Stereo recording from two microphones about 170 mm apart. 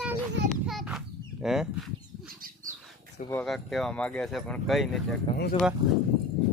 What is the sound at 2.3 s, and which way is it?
Wild animals, 55° right (ahead or behind).